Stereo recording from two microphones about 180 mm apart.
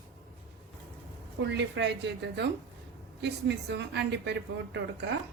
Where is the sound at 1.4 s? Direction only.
75° right (ahead or behind).